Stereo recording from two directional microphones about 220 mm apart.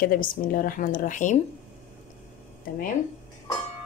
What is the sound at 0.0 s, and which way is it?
A woman's voice, 40° left (ahead or behind).